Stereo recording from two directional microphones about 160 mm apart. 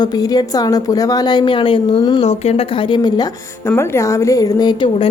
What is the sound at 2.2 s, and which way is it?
A woman's voice, 45° left (ahead or behind).